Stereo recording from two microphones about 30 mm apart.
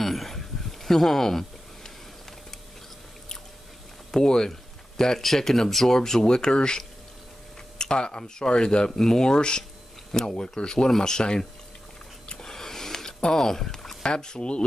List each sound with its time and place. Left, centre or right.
0.0 s a sound: centre
4.1 s speech: left
5.2 s speech: centre; by 6.8 s left
7.8 s speech: left
12.3 s a sound: left
13.2 s speech: centre
14.0 s speech: left